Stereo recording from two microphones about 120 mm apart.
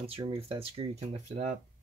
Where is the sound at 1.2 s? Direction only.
75° right (ahead or behind).